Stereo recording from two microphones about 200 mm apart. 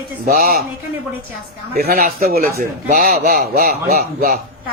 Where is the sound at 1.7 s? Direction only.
45° right (ahead or behind).